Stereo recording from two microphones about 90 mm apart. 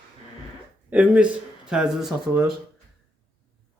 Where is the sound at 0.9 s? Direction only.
15° right (ahead or behind).